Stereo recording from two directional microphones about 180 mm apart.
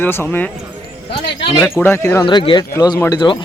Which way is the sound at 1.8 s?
10° left (ahead or behind).